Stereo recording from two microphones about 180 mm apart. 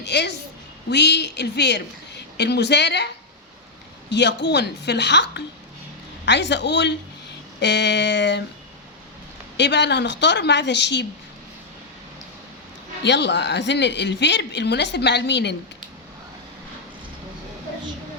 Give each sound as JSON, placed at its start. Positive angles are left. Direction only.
{"t": 0.0, "sound": "speech", "side_deg": 70}
{"t": 4.1, "sound": "speech", "side_deg": 75}
{"t": 9.6, "sound": "speech", "side_deg": 75}
{"t": 13.0, "sound": "speech", "side_deg": 75}